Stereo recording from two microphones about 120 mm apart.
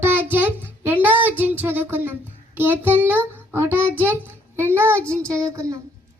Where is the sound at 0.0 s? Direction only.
15° right (ahead or behind).